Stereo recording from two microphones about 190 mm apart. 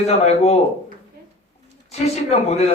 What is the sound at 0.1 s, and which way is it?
Speech, 35° left (ahead or behind).